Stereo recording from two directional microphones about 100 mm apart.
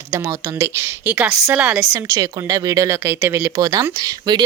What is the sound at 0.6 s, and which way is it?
Speech, 25° right (ahead or behind).